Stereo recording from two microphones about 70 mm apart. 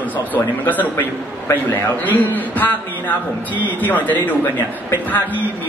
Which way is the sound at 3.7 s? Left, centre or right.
Left.